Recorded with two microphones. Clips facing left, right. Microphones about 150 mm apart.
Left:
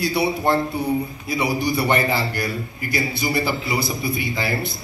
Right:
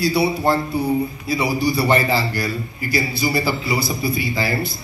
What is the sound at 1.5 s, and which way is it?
A man's voice, 20° left (ahead or behind).